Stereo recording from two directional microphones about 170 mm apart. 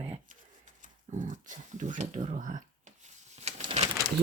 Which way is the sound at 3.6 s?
30° right (ahead or behind).